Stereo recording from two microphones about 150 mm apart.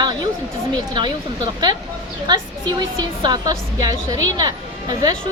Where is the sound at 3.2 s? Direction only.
30° right (ahead or behind).